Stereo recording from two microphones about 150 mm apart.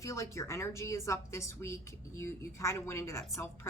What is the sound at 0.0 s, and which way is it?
Speech, 20° left (ahead or behind).